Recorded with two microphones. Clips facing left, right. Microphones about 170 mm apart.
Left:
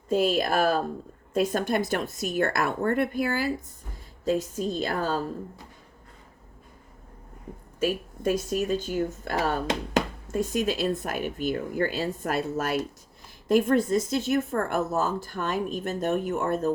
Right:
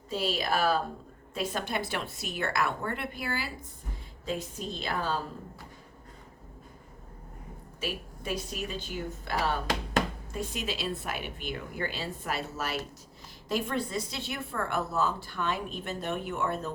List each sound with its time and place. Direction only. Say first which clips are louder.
0.1 s speech: left 7 dB; 50° left (ahead or behind)
7.8 s speech: left 10 dB; 45° left (ahead or behind)